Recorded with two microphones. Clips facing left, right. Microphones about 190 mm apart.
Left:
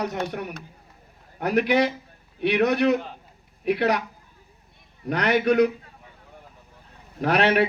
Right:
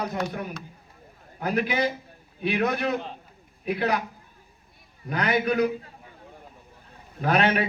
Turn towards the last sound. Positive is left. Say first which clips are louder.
# left 2 dB
turn(degrees=70)  # may be behind; listen again after turning